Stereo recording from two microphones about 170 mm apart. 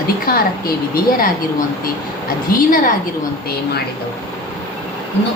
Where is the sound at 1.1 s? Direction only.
55° left (ahead or behind).